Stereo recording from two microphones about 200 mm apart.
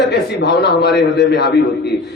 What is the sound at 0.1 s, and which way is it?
A man's voice, 55° left (ahead or behind).